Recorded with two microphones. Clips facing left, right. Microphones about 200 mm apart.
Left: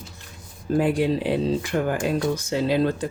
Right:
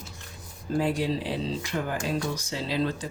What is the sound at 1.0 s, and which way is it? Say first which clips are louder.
Speech: left 6 dB; 55° left (ahead or behind).